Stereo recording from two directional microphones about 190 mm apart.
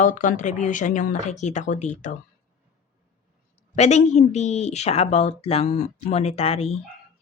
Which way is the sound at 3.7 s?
35° left (ahead or behind).